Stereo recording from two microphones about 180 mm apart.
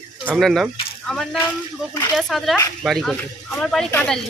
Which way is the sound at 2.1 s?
Centre (ahead or behind).